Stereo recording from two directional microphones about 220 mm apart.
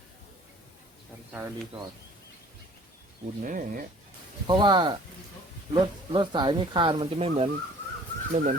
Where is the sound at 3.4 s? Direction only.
40° right (ahead or behind).